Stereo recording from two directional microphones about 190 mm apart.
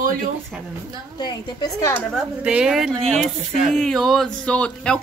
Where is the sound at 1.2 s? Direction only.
20° left (ahead or behind).